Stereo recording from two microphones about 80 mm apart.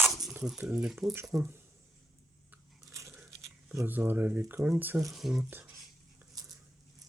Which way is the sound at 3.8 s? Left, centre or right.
Right.